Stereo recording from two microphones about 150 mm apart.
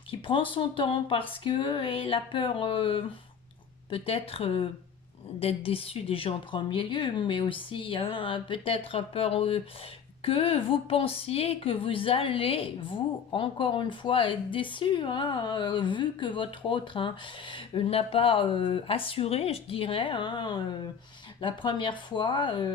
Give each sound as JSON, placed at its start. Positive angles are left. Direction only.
{"t": 0.1, "sound": "speech", "side_deg": 35}